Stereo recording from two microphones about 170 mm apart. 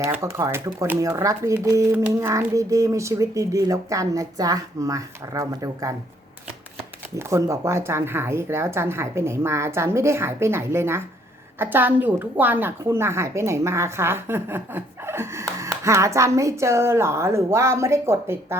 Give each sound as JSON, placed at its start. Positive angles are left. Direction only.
{"t": 0.0, "sound": "a woman's voice", "side_deg": -15}
{"t": 7.2, "sound": "a woman's voice", "side_deg": -15}